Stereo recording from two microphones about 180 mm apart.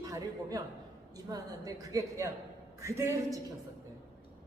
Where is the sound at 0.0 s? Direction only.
20° right (ahead or behind).